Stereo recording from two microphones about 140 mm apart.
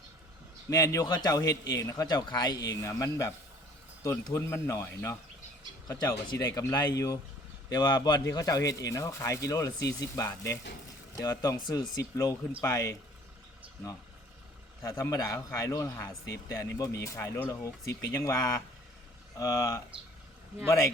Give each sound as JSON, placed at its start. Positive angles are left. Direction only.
{"t": 0.7, "sound": "speech", "side_deg": 25}
{"t": 14.8, "sound": "speech", "side_deg": 25}